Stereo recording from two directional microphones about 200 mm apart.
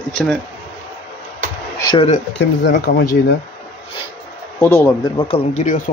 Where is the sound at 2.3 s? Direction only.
60° left (ahead or behind).